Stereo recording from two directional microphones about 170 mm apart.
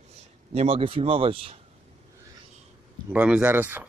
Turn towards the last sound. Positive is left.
turn(degrees=-10)  # may be behind; listen again after turning